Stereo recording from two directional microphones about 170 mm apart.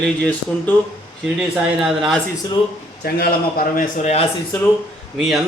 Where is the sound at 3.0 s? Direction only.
65° left (ahead or behind).